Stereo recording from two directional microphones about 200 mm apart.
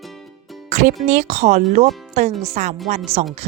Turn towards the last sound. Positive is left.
turn(degrees=-30)  # may be behind; listen again after turning